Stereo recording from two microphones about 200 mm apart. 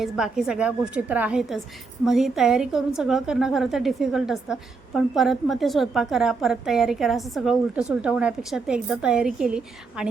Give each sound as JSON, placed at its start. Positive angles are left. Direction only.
{"t": 0.0, "sound": "a woman's voice", "side_deg": 0}